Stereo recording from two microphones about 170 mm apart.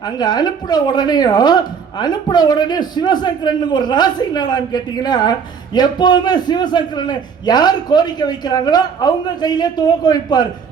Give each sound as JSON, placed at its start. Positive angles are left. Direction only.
{"t": 0.0, "sound": "a woman's voice", "side_deg": 25}